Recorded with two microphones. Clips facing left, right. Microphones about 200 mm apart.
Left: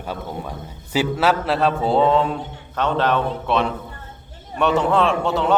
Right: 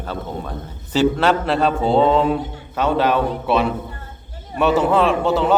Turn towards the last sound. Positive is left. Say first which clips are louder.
# right 2 dB
turn(degrees=0)  # may be behind; listen again after turning